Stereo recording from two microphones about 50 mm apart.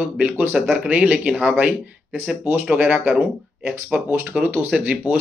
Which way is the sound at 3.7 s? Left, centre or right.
Centre.